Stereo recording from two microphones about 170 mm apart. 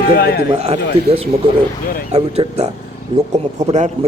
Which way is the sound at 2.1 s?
40° right (ahead or behind).